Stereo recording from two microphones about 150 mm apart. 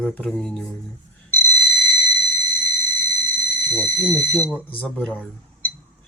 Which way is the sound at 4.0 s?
15° left (ahead or behind).